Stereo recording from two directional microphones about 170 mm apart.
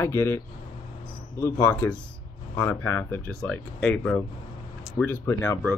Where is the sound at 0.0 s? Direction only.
15° left (ahead or behind).